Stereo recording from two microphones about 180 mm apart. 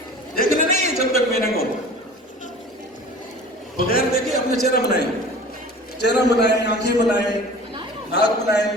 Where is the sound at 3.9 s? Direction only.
55° left (ahead or behind).